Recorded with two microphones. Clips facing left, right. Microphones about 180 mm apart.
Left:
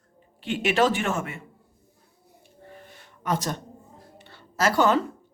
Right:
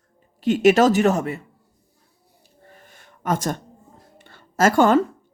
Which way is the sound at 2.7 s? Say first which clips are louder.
Left 3 dB; 45° right (ahead or behind).